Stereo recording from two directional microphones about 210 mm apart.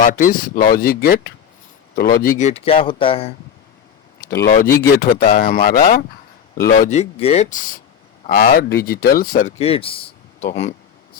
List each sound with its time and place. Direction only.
0.0 s speech: 40° left (ahead or behind)
2.5 s speech: 30° left (ahead or behind)
4.2 s speech: 50° left (ahead or behind)
9.6 s speech: 25° left (ahead or behind)